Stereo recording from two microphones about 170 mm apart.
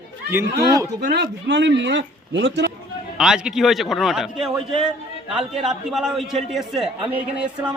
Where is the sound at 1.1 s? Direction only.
85° right.